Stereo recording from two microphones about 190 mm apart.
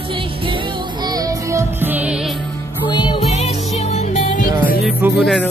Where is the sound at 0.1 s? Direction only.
25° right (ahead or behind); by 2.3 s 5° right (ahead or behind).